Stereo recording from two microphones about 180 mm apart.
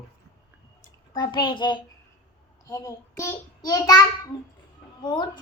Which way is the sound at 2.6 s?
20° left (ahead or behind).